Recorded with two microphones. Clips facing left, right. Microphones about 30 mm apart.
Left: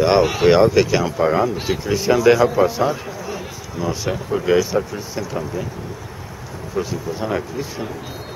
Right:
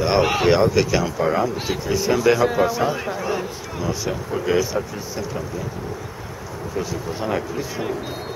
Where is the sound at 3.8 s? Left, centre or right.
Centre.